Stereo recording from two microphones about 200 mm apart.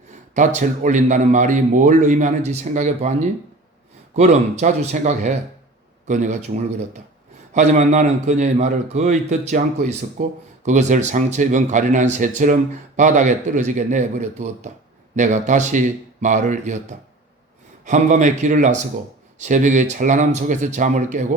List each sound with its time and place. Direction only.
0.3 s speech: 40° right (ahead or behind)
17.8 s speech: 35° right (ahead or behind)